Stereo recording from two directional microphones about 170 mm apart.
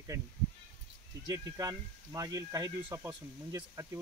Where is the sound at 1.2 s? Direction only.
20° right (ahead or behind).